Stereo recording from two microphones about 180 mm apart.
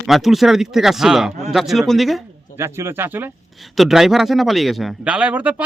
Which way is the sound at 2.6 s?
15° right (ahead or behind).